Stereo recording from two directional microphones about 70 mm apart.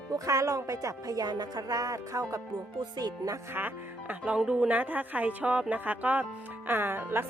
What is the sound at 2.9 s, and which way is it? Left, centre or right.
Music, right.